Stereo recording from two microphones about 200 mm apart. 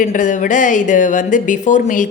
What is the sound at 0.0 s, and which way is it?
Speech, 40° left (ahead or behind).